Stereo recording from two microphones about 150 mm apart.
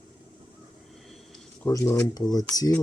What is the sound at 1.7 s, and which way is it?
Speech, 20° left (ahead or behind).